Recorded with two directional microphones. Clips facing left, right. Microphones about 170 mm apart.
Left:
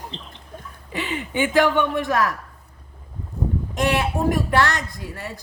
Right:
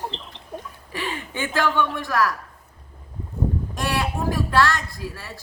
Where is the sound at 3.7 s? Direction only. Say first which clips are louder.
Left 4 dB; 20° left (ahead or behind).